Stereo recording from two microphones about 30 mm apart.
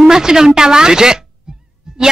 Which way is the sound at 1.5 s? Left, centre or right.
Right.